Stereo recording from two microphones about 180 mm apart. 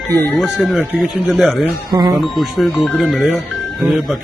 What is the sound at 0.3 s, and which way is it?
Speech, centre (ahead or behind).